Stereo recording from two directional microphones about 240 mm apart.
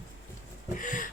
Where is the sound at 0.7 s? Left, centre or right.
Left.